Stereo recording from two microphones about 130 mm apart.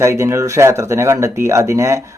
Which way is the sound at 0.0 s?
20° right (ahead or behind).